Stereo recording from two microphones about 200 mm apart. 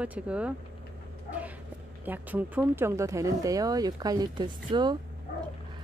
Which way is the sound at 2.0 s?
10° right (ahead or behind).